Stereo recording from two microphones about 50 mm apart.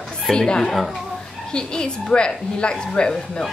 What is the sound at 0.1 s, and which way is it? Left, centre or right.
Speech, centre.